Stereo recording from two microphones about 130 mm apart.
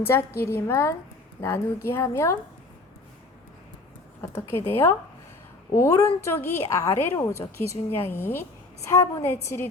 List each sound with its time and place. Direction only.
0.0 s a woman's voice: 20° left (ahead or behind)
4.2 s a woman's voice: 20° left (ahead or behind)